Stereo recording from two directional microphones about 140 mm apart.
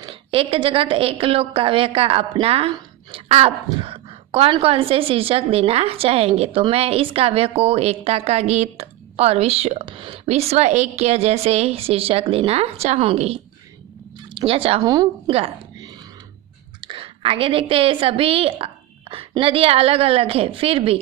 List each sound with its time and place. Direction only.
0.0 s a woman's voice: 40° right (ahead or behind)
14.8 s a woman's voice: 25° right (ahead or behind)
15.2 s a woman's voice: 45° right (ahead or behind)
16.8 s a woman's voice: 40° right (ahead or behind)